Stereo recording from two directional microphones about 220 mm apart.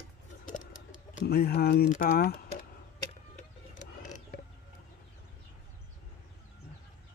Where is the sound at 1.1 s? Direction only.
45° left (ahead or behind).